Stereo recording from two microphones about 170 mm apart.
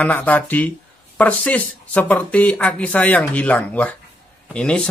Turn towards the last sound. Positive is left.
turn(degrees=5)  # may be behind; listen again after turning